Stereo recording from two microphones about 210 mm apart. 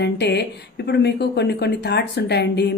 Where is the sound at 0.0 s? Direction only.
55° left (ahead or behind).